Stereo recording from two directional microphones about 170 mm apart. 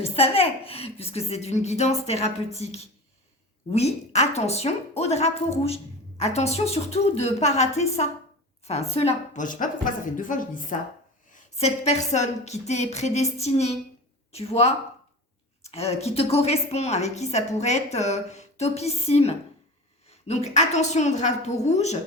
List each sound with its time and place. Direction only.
0.0 s a woman's voice: 35° left (ahead or behind)